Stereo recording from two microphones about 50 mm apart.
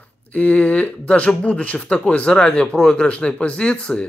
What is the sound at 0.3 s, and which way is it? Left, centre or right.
Speech, left.